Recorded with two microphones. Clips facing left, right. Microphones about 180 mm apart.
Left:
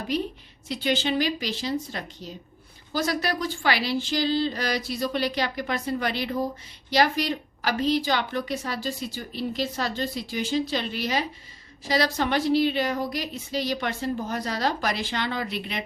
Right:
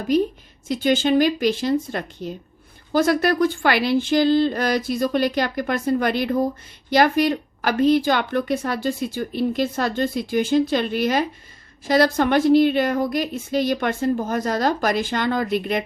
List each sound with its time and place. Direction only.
0.1 s a woman's voice: 45° right (ahead or behind)